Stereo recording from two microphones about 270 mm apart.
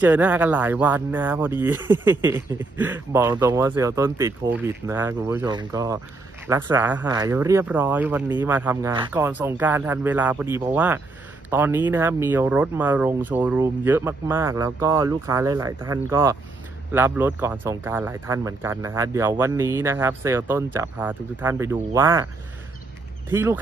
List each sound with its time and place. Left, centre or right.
0.0 s speech: centre
23.3 s speech: centre